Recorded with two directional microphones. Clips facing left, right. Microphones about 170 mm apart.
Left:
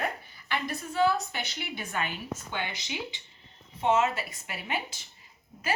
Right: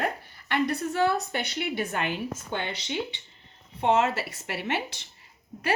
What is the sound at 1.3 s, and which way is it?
Speech, 60° right (ahead or behind).